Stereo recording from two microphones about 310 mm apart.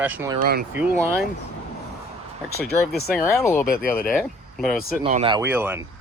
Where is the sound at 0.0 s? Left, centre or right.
Centre.